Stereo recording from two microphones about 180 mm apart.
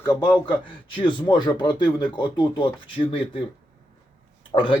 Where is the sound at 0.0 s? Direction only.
10° left (ahead or behind).